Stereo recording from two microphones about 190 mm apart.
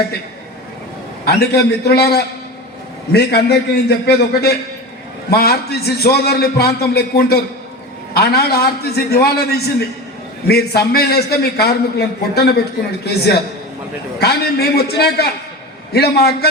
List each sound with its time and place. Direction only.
1.2 s a man's voice: 55° left (ahead or behind)